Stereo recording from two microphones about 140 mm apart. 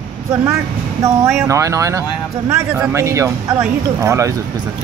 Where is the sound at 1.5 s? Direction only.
25° right (ahead or behind).